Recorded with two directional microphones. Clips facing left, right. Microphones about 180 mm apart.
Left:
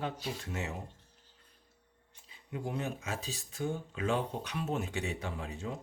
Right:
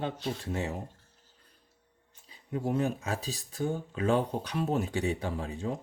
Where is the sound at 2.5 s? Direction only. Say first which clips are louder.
Right 7 dB; 40° right (ahead or behind).